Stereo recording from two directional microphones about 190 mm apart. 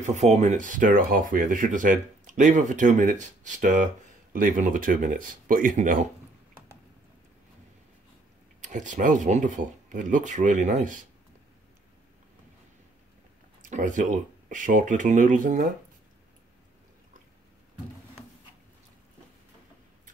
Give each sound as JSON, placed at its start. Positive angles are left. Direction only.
{"t": 0.0, "sound": "speech", "side_deg": -35}
{"t": 8.5, "sound": "speech", "side_deg": -40}
{"t": 13.6, "sound": "speech", "side_deg": -40}